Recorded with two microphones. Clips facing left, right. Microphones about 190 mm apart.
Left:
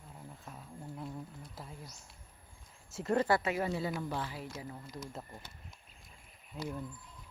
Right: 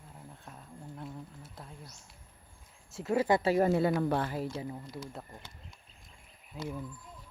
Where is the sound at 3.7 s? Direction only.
60° right (ahead or behind).